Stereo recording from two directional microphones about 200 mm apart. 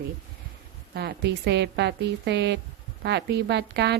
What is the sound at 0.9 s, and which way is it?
A woman's voice, 55° right (ahead or behind).